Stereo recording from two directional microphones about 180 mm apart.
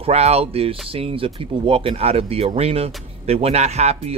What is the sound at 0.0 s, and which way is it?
Speech, 35° right (ahead or behind).